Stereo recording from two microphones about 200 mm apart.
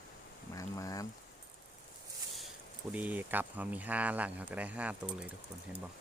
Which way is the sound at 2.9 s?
10° right (ahead or behind).